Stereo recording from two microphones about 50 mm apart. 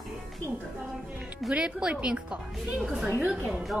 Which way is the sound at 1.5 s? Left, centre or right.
Right.